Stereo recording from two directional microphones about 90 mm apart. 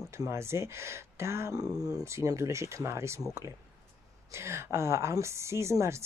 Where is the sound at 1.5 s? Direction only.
45° right (ahead or behind).